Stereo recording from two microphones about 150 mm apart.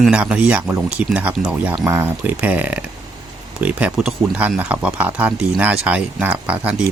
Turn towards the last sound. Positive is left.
turn(degrees=-10)  # may be behind; listen again after turning